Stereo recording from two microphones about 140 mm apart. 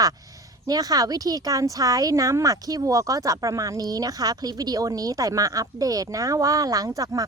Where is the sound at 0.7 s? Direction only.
25° right (ahead or behind).